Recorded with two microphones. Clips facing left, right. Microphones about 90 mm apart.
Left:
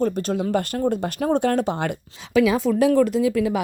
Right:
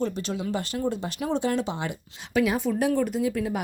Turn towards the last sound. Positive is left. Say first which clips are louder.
# left 6 dB
turn(degrees=90)